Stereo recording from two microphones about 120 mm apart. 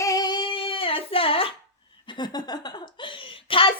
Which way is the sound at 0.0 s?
30° left (ahead or behind).